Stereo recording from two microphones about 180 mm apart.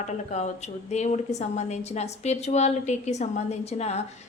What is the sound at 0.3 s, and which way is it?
A woman's voice, 40° left (ahead or behind).